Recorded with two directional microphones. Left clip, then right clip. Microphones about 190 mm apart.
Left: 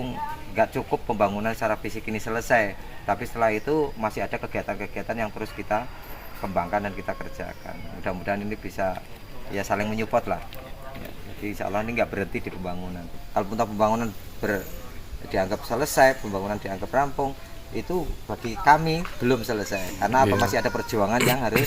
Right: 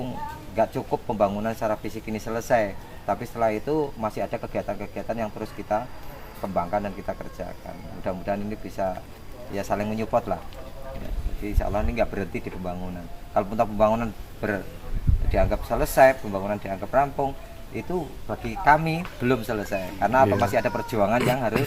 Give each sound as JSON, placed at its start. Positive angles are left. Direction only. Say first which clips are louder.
{"t": 0.5, "sound": "speech", "louder": "even", "side_deg": -15}
{"t": 11.4, "sound": "speech", "louder": "even", "side_deg": -10}
{"t": 18.3, "sound": "speech", "louder": "left 1 dB", "side_deg": -15}
{"t": 20.2, "sound": "speech", "louder": "right 1 dB", "side_deg": 0}
{"t": 20.6, "sound": "speech", "louder": "right 1 dB", "side_deg": -20}
{"t": 21.2, "sound": "speech", "louder": "left 1 dB", "side_deg": 0}